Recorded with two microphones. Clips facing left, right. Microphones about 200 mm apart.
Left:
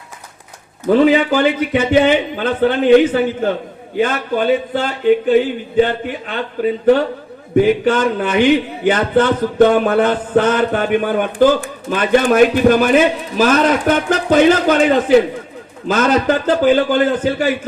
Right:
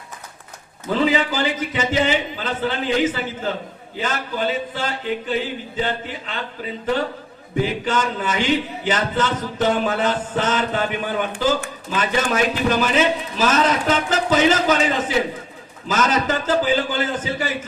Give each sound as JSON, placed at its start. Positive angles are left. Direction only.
{"t": 0.9, "sound": "speech", "side_deg": 55}
{"t": 7.5, "sound": "speech", "side_deg": 60}